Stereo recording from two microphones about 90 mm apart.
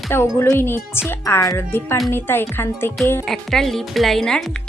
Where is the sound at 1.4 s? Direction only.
40° left (ahead or behind).